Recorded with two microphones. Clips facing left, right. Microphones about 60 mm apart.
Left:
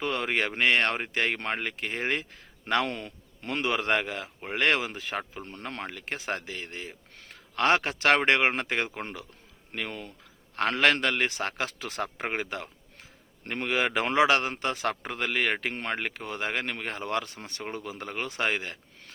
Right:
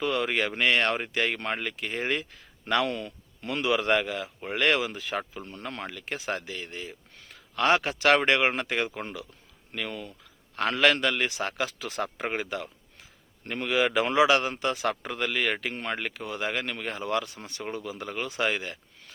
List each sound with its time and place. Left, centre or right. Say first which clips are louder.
0.0 s a man's voice: right 1 dB; left